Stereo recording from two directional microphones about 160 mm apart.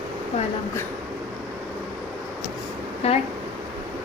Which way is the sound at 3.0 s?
40° left (ahead or behind).